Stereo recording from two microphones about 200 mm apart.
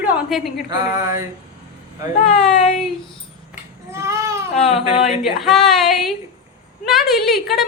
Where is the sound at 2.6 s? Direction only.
35° left (ahead or behind).